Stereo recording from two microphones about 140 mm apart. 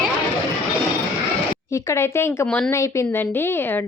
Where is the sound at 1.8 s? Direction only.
20° left (ahead or behind).